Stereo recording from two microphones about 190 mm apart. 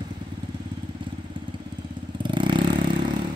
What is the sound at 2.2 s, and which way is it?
Vehicle, 25° right (ahead or behind).